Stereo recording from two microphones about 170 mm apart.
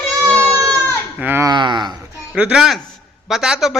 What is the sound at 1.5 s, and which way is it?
Speech, 25° right (ahead or behind).